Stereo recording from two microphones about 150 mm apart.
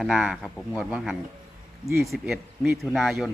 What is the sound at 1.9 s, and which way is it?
Speech, 20° right (ahead or behind).